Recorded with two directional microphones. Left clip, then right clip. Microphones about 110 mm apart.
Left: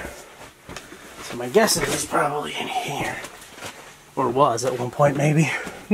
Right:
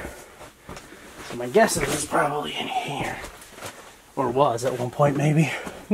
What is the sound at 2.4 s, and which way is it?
Speech, 20° left (ahead or behind).